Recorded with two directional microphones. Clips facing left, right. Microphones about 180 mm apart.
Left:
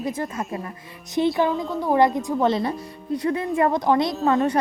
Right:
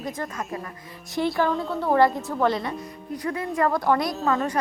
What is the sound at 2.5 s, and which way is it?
Speech, 35° left (ahead or behind).